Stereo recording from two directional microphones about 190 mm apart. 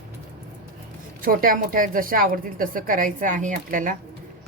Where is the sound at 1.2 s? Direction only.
50° right (ahead or behind).